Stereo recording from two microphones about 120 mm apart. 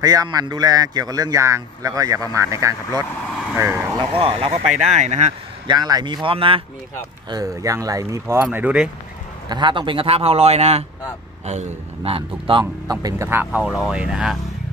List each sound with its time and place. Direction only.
0.0 s speech: 30° right (ahead or behind)
4.1 s a man's voice: 50° right (ahead or behind)
4.5 s speech: 70° right (ahead or behind)
5.7 s speech: 35° right (ahead or behind); by 6.6 s 50° right (ahead or behind)
7.2 s speech: 30° right (ahead or behind)
8.5 s speech: 10° right (ahead or behind)
9.5 s a man's voice: 40° right (ahead or behind)
13.0 s speech: 20° right (ahead or behind); by 14.4 s 5° right (ahead or behind)